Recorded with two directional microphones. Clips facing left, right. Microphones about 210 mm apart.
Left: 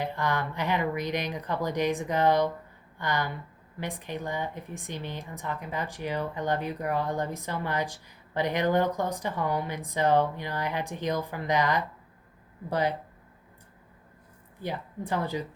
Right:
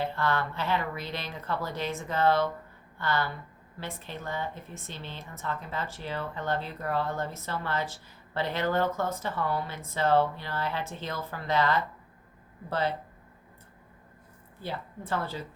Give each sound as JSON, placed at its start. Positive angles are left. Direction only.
{"t": 0.0, "sound": "a woman's voice", "side_deg": 15}
{"t": 14.6, "sound": "a woman's voice", "side_deg": 15}